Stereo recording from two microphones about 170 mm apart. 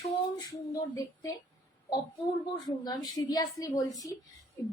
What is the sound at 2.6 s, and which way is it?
A woman's voice, 25° left (ahead or behind).